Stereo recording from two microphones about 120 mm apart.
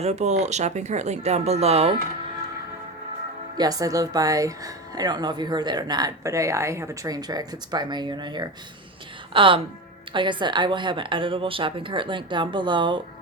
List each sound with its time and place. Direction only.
0.0 s speech: 65° right (ahead or behind)
3.6 s a woman's voice: 30° right (ahead or behind)